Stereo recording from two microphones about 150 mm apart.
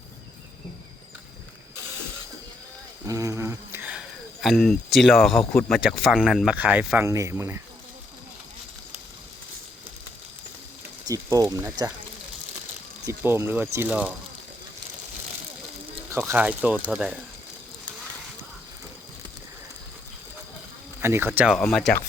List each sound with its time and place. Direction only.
3.1 s a sound: 20° right (ahead or behind); by 5.4 s centre (ahead or behind)
5.5 s speech: centre (ahead or behind); by 7.6 s 15° right (ahead or behind)
11.0 s speech: 25° right (ahead or behind)
13.1 s speech: 15° right (ahead or behind)
16.0 s speech: 15° right (ahead or behind)
21.0 s speech: 15° right (ahead or behind)
21.3 s speech: 5° right (ahead or behind)